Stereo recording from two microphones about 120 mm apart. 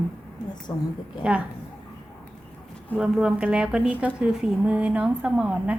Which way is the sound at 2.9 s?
5° right (ahead or behind).